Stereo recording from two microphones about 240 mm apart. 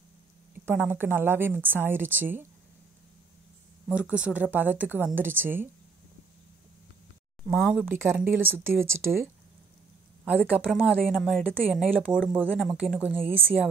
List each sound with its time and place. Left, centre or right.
0.7 s speech: centre
3.9 s speech: centre
7.4 s speech: centre